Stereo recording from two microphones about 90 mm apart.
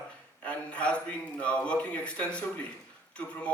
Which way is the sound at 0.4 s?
15° left (ahead or behind).